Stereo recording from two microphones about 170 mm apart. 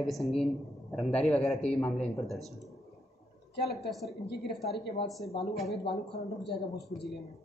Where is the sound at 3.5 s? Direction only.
75° left (ahead or behind).